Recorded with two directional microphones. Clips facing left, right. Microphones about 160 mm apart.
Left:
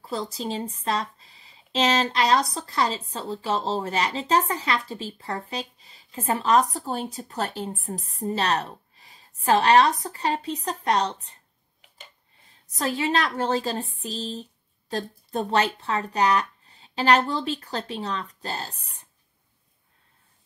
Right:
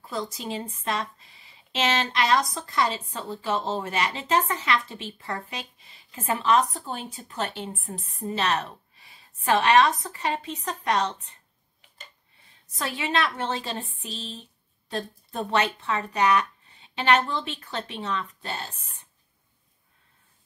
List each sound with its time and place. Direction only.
0.1 s speech: 35° left (ahead or behind)
12.7 s speech: 40° left (ahead or behind)